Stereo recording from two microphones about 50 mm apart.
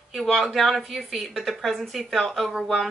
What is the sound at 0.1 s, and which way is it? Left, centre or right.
A woman's voice, centre.